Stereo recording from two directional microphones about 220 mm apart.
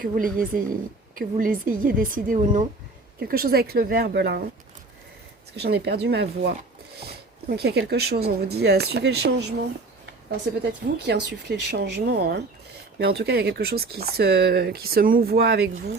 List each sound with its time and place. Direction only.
0.0 s speech: 40° right (ahead or behind)
5.5 s speech: 50° right (ahead or behind)
7.5 s speech: 50° right (ahead or behind)
10.6 s speech: 50° right (ahead or behind)